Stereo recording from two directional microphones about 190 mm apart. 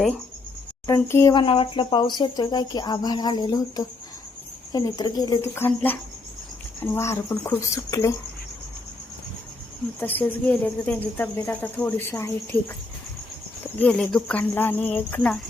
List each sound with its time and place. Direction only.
0.9 s speech: 15° left (ahead or behind)
10.0 s speech: 10° left (ahead or behind)
13.7 s speech: 5° left (ahead or behind)